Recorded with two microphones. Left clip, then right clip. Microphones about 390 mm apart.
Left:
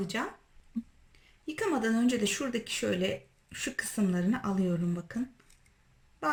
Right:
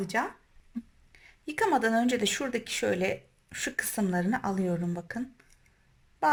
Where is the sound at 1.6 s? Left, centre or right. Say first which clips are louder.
Right 5 dB; centre.